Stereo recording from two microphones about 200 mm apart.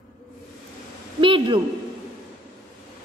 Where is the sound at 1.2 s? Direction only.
25° right (ahead or behind).